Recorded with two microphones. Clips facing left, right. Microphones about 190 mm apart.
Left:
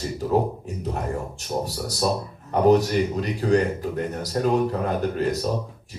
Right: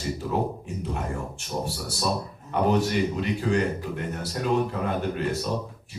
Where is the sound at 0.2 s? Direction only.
35° left (ahead or behind).